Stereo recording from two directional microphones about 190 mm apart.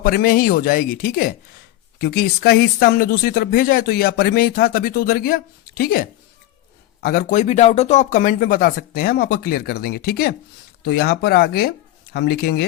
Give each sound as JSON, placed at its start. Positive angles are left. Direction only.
{"t": 0.0, "sound": "speech", "side_deg": 50}